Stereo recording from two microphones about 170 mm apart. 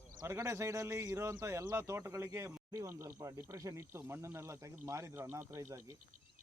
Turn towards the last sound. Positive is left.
turn(degrees=-15)  # may be behind; listen again after turning